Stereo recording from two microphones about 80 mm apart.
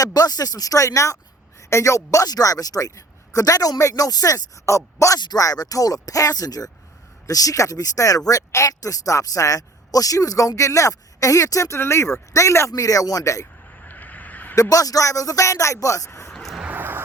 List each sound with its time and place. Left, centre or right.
0.0 s a man's voice: left
13.8 s vehicle: left
14.5 s a man's voice: left
16.3 s a sound: centre
16.6 s vehicle: right